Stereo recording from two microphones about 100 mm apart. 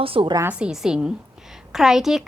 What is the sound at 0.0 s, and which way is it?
Speech, 65° right (ahead or behind).